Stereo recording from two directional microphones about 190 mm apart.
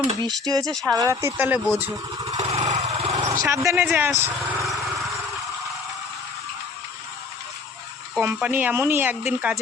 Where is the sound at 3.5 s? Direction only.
15° right (ahead or behind).